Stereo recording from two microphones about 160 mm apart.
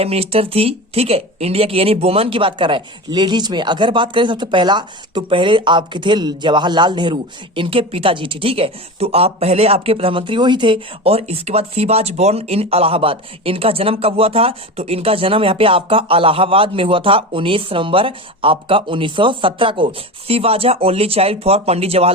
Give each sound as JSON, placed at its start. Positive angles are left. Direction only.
{"t": 0.0, "sound": "speech", "side_deg": -40}